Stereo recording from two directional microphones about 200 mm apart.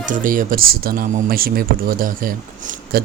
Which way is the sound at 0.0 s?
40° right (ahead or behind).